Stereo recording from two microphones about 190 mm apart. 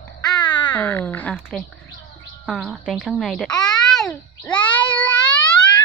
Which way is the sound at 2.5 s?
Centre (ahead or behind).